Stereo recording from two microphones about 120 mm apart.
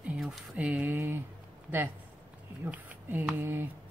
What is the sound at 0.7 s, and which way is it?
Mantra, 15° right (ahead or behind).